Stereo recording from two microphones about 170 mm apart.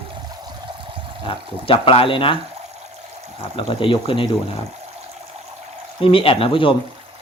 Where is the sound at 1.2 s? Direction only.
30° left (ahead or behind).